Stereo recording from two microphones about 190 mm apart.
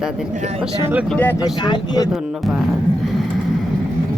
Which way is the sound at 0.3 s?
35° right (ahead or behind).